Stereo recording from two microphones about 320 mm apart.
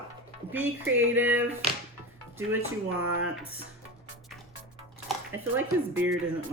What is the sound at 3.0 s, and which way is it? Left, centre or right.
Speech, right.